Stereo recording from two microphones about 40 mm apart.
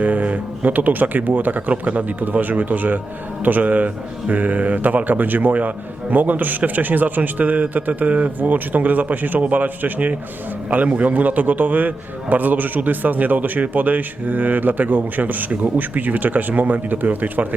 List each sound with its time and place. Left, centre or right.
0.0 s speech: right
1.7 s a man's voice: right
8.4 s a man's voice: right